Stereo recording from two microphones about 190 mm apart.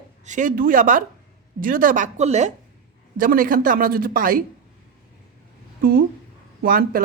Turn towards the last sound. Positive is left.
turn(degrees=-50)  # may be behind; listen again after turning